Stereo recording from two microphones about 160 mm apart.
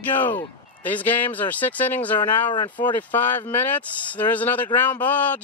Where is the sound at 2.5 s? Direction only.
30° left (ahead or behind).